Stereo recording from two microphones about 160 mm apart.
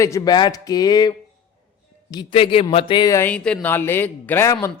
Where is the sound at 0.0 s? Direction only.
20° left (ahead or behind).